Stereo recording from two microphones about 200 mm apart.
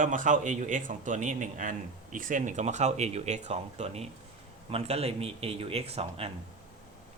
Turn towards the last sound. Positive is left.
turn(degrees=-30)  # may be behind; listen again after turning